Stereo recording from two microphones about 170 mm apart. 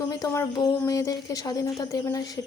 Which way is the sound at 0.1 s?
20° left (ahead or behind).